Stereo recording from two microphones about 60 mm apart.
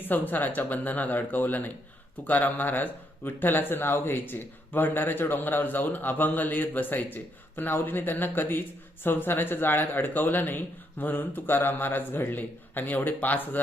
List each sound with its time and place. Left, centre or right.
0.0 s speech: left